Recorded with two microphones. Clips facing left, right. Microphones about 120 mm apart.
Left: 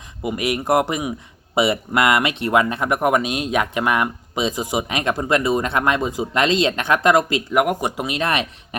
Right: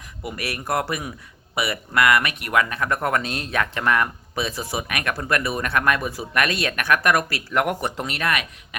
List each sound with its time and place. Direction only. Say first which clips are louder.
0.2 s speech: left 8 dB; 20° left (ahead or behind)
8.3 s speech: left 3 dB; 30° left (ahead or behind)